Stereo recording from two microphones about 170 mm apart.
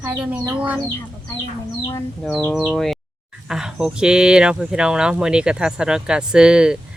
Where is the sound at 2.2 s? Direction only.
Centre (ahead or behind).